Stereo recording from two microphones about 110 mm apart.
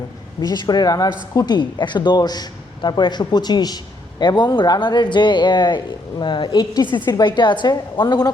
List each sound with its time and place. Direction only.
0.4 s a man's voice: 40° left (ahead or behind)
1.5 s a man's voice: 45° left (ahead or behind)